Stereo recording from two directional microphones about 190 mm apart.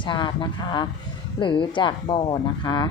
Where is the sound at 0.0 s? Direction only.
25° left (ahead or behind).